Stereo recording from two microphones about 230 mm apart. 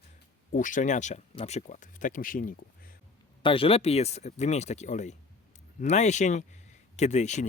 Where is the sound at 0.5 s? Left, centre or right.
Left.